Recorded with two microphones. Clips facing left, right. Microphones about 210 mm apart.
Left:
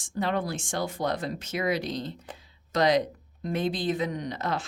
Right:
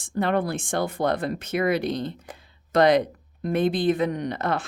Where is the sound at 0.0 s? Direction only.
60° right (ahead or behind).